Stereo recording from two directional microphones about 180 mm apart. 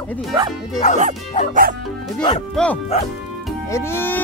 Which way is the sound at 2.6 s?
5° left (ahead or behind).